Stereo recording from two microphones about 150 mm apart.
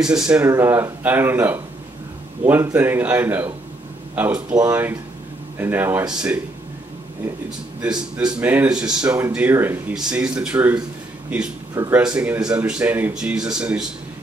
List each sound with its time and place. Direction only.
0.0 s speech: 5° right (ahead or behind)
0.4 s speech: 15° right (ahead or behind)
8.4 s speech: 10° right (ahead or behind)